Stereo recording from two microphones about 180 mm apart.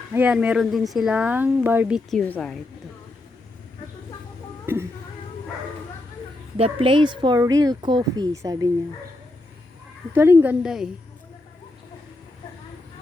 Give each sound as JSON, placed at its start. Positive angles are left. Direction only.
{"t": 0.1, "sound": "speech", "side_deg": -10}
{"t": 2.0, "sound": "a woman's voice", "side_deg": 5}
{"t": 4.6, "sound": "speech", "side_deg": -15}
{"t": 6.6, "sound": "speech", "side_deg": -30}
{"t": 10.1, "sound": "speech", "side_deg": -15}